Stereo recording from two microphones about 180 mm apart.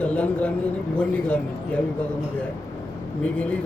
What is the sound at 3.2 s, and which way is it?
Speech, 5° left (ahead or behind).